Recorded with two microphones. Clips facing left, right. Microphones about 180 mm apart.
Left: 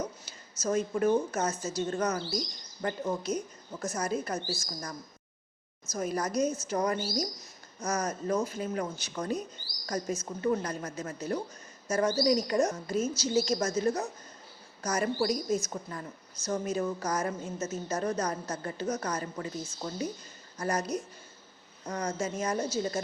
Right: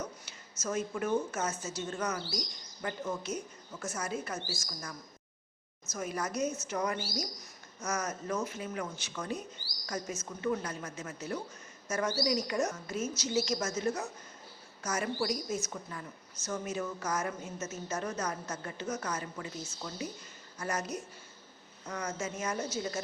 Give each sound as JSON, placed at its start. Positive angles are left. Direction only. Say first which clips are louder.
{"t": 0.6, "sound": "a woman's voice", "louder": "left 6 dB", "side_deg": 35}